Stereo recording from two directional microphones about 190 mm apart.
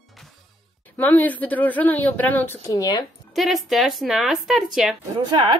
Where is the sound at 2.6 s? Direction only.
20° left (ahead or behind).